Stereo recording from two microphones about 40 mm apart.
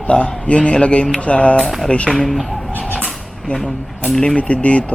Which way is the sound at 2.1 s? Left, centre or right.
Centre.